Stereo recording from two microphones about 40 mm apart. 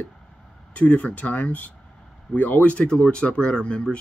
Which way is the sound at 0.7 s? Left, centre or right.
Left.